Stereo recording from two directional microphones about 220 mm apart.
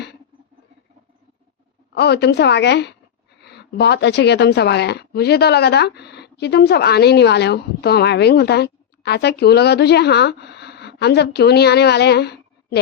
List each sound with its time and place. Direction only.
2.0 s speech: 50° left (ahead or behind)